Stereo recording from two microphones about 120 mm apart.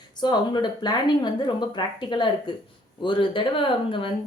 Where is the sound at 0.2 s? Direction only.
35° left (ahead or behind).